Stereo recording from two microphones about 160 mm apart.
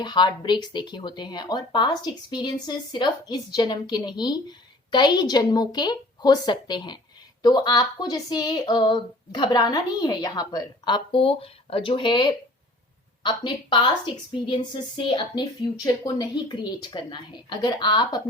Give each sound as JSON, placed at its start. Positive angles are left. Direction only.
{"t": 0.0, "sound": "speech", "side_deg": 30}